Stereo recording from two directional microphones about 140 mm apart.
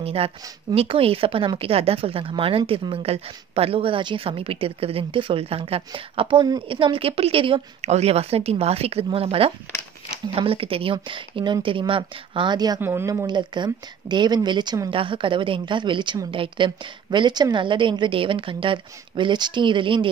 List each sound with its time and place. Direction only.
0.0 s a woman's voice: 45° right (ahead or behind)